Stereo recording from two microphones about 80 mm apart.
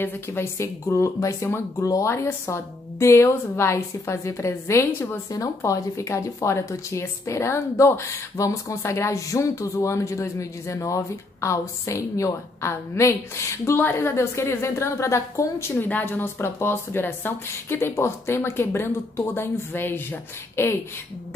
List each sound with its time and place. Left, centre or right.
0.0 s a woman's voice: left